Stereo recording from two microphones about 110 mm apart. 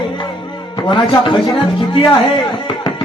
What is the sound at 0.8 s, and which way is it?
Speech, 50° left (ahead or behind).